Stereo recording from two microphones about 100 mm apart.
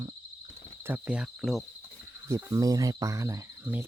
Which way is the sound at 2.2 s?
30° right (ahead or behind).